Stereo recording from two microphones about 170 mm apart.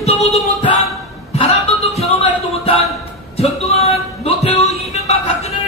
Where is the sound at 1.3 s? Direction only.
40° left (ahead or behind).